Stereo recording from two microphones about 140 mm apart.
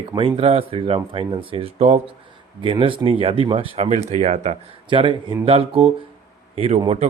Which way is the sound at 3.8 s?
55° right (ahead or behind).